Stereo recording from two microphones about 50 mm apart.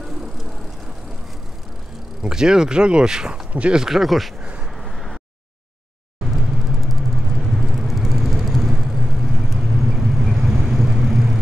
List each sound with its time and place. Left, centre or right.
2.2 s speech: centre
3.5 s speech: right
3.8 s speech: centre
6.2 s vehicle: centre